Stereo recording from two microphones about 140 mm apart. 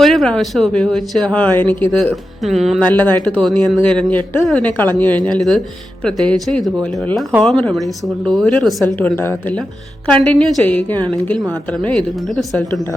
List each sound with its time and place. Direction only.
0.0 s speech: centre (ahead or behind)
2.8 s a woman's voice: 10° left (ahead or behind)
3.3 s a woman's voice: centre (ahead or behind)
9.0 s a woman's voice: 15° left (ahead or behind)